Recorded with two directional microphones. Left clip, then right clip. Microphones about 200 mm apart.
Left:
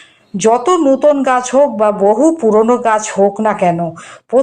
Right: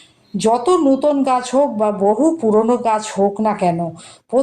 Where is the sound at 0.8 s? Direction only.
30° left (ahead or behind).